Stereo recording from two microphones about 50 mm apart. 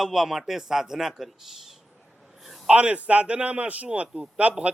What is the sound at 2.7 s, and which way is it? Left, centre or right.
A man's voice, right.